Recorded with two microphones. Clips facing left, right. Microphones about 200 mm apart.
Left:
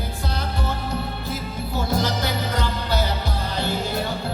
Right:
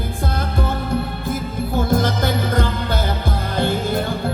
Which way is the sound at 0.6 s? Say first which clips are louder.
Right 8 dB; 50° right (ahead or behind).